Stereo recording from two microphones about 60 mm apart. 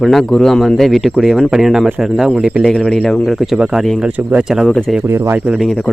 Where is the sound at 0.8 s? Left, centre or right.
Centre.